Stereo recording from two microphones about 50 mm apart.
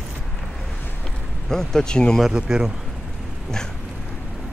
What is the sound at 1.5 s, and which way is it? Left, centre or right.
Speech, centre.